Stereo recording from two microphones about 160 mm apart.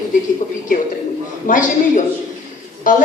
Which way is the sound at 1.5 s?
55° left (ahead or behind).